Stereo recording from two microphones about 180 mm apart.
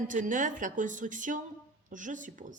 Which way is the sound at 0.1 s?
45° right (ahead or behind).